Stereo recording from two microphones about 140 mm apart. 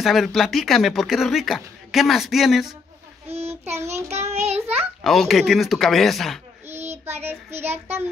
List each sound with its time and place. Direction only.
0.0 s speech: centre (ahead or behind)
3.3 s child singing: 50° right (ahead or behind)
5.0 s speech: centre (ahead or behind)
6.8 s child singing: 50° right (ahead or behind)
7.2 s child singing: 15° right (ahead or behind)